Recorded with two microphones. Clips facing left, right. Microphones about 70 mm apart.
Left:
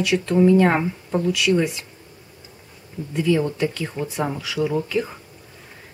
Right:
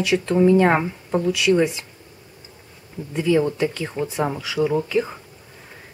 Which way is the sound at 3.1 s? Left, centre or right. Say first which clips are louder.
Right 1 dB; centre.